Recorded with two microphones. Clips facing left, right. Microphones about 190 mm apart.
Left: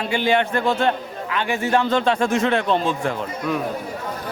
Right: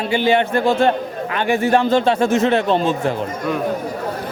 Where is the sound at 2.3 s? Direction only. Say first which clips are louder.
Right 4 dB; 25° right (ahead or behind).